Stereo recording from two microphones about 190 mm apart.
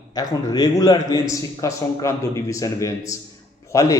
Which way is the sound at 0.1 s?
20° left (ahead or behind).